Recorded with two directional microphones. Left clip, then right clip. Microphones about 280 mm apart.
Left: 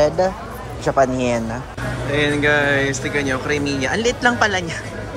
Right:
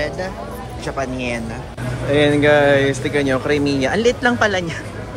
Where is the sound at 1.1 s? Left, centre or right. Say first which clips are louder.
Left 4 dB; left.